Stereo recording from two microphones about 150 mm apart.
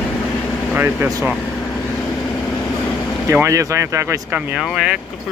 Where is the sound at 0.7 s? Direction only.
10° right (ahead or behind).